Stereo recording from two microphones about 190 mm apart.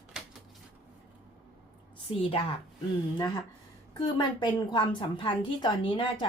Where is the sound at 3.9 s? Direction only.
25° left (ahead or behind).